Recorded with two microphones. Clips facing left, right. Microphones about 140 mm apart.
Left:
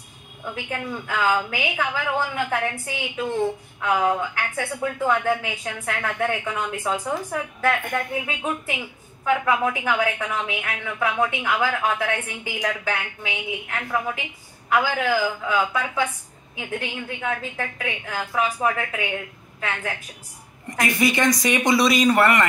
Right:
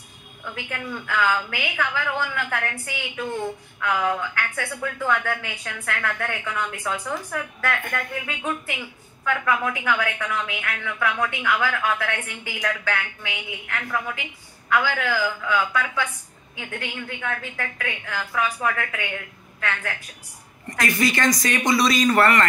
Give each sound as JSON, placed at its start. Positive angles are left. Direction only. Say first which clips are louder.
{"t": 0.4, "sound": "a woman's voice", "louder": "left 3 dB", "side_deg": 25}
{"t": 2.1, "sound": "a woman's voice", "louder": "left 3 dB", "side_deg": 40}
{"t": 3.8, "sound": "a woman's voice", "louder": "left 2 dB", "side_deg": 25}
{"t": 14.8, "sound": "a woman's voice", "louder": "left 3 dB", "side_deg": 35}
{"t": 15.0, "sound": "speech", "louder": "left 3 dB", "side_deg": 15}
{"t": 15.4, "sound": "a woman's voice", "louder": "left 1 dB", "side_deg": 30}